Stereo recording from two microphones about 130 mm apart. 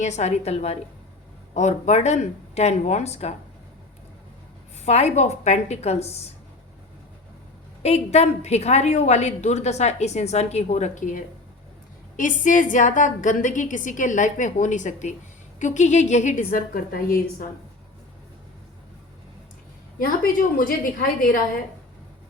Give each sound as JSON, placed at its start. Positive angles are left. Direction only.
{"t": 0.0, "sound": "a woman's voice", "side_deg": 60}
{"t": 1.5, "sound": "a woman's voice", "side_deg": 65}
{"t": 4.9, "sound": "a woman's voice", "side_deg": 55}
{"t": 7.8, "sound": "a woman's voice", "side_deg": 55}
{"t": 20.1, "sound": "a woman's voice", "side_deg": 90}